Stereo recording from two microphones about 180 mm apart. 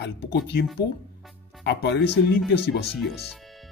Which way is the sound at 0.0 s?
70° left (ahead or behind).